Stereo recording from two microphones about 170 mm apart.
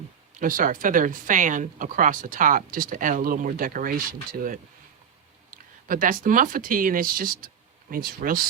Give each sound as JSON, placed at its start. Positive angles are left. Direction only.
{"t": 0.3, "sound": "speech", "side_deg": -55}
{"t": 5.9, "sound": "speech", "side_deg": -55}